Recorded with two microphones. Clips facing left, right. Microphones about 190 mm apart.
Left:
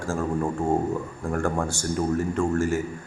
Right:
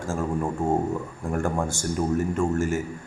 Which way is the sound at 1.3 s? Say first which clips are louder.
Even; 20° right (ahead or behind).